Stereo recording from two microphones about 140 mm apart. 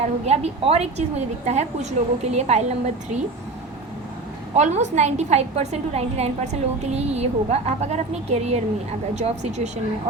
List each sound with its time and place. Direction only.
0.3 s a woman's voice: 50° right (ahead or behind)
4.5 s a woman's voice: 55° right (ahead or behind)